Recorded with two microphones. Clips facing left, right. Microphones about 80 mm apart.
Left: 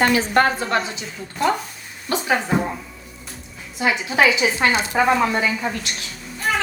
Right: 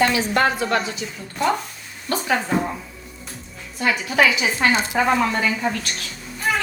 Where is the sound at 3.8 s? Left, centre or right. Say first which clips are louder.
Even; centre.